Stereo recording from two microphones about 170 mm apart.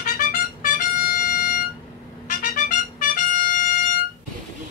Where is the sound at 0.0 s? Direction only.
55° left (ahead or behind).